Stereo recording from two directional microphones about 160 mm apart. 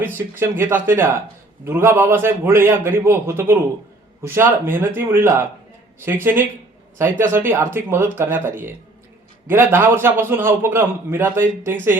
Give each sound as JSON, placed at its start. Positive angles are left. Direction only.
{"t": 0.3, "sound": "a man's voice", "side_deg": -15}